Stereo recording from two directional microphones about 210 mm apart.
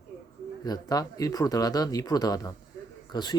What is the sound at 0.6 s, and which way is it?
Speech, 20° left (ahead or behind).